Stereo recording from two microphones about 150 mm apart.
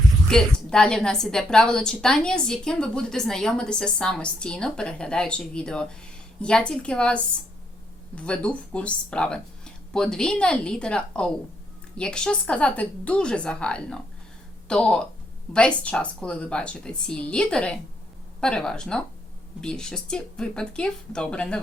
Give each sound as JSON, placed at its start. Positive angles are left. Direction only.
{"t": 0.3, "sound": "a woman's voice", "side_deg": 5}